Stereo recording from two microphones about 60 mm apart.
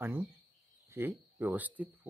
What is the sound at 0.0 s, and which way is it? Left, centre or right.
Speech, right.